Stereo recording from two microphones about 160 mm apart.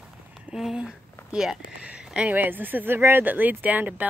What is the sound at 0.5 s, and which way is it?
Speech, 5° right (ahead or behind).